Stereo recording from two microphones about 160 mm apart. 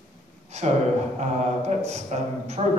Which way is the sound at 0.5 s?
45° right (ahead or behind).